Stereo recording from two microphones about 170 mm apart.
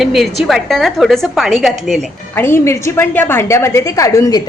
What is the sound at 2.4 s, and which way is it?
A woman's voice, 15° left (ahead or behind).